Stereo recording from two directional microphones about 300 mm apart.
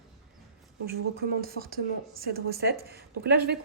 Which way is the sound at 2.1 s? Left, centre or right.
Right.